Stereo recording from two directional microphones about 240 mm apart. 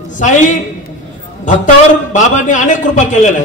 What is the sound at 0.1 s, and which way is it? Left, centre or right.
A man's voice, left.